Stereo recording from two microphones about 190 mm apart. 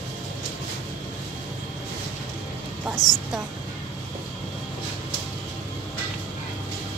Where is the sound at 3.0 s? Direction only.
20° left (ahead or behind).